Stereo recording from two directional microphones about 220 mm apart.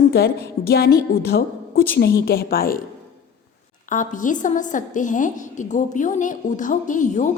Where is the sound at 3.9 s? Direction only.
35° left (ahead or behind).